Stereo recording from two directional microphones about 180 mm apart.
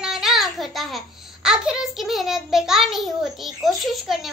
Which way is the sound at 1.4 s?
5° right (ahead or behind).